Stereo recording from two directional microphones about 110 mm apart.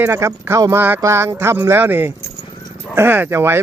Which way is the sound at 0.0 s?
25° right (ahead or behind).